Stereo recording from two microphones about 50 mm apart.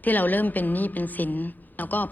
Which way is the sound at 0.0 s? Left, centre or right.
Left.